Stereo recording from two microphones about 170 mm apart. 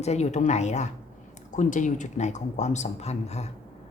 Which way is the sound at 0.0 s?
40° left (ahead or behind).